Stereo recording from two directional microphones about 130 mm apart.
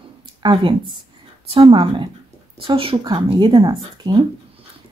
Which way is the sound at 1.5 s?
45° right (ahead or behind).